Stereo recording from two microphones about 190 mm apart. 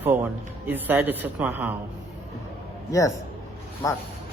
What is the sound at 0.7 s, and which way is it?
A woman's voice, 10° right (ahead or behind).